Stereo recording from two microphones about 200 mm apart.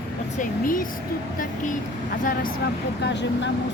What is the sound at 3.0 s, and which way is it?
Speech, 60° left (ahead or behind).